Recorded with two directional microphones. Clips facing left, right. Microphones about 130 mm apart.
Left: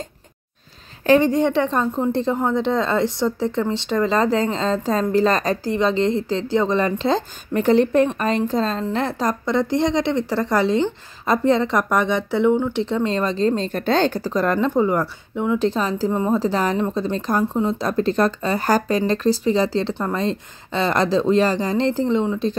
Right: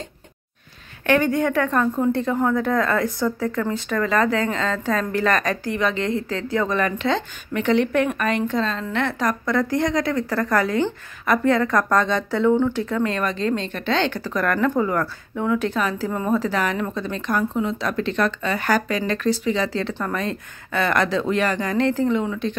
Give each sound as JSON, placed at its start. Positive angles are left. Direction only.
{"t": 1.0, "sound": "a woman's voice", "side_deg": 25}
{"t": 14.3, "sound": "a woman's voice", "side_deg": 25}